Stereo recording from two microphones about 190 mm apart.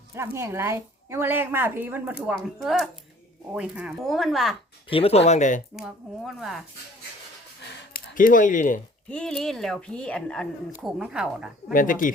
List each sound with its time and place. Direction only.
0.3 s a woman's voice: 15° right (ahead or behind)
4.9 s speech: 30° left (ahead or behind)
5.7 s a woman's voice: centre (ahead or behind)
7.9 s speech: 45° left (ahead or behind)
9.0 s a woman's voice: 5° left (ahead or behind)
11.7 s speech: 45° left (ahead or behind)